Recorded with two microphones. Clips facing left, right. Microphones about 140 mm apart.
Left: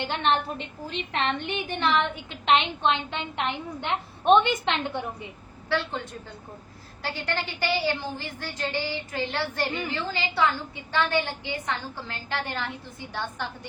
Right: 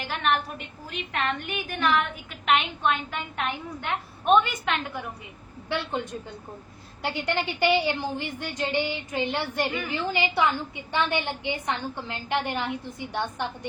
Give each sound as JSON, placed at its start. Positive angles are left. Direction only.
{"t": 0.0, "sound": "a woman's voice", "side_deg": 30}
{"t": 5.6, "sound": "a woman's voice", "side_deg": -20}